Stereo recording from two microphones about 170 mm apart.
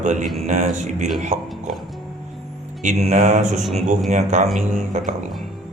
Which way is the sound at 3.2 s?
45° right (ahead or behind).